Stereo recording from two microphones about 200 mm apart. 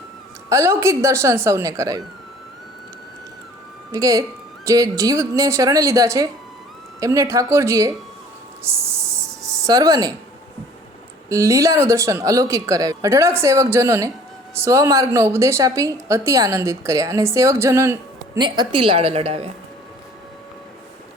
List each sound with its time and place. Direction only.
0.5 s a woman's voice: 15° right (ahead or behind)
3.9 s a woman's voice: 15° right (ahead or behind)
8.6 s a sound: 15° right (ahead or behind)
11.3 s a woman's voice: 15° right (ahead or behind); by 19.5 s 30° right (ahead or behind)